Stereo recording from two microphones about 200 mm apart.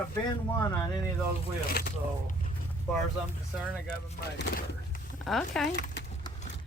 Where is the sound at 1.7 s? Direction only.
50° left (ahead or behind).